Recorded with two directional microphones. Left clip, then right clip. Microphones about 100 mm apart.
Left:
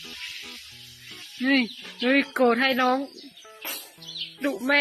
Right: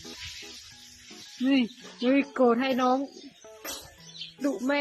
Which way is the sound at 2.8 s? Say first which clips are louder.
Left 2 dB; 10° left (ahead or behind).